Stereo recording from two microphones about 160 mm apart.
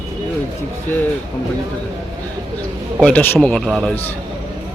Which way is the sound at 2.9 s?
5° left (ahead or behind).